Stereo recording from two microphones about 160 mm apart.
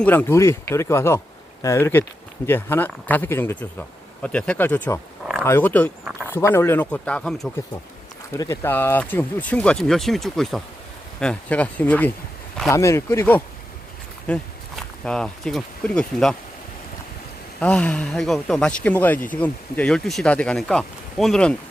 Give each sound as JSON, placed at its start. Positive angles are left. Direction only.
{"t": 0.0, "sound": "speech", "side_deg": 10}
{"t": 8.3, "sound": "speech", "side_deg": 15}
{"t": 17.6, "sound": "speech", "side_deg": 5}